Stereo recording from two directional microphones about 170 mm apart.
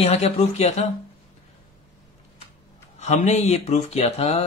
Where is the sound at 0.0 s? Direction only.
40° left (ahead or behind).